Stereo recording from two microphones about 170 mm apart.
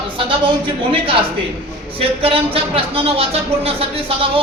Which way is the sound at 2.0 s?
35° right (ahead or behind).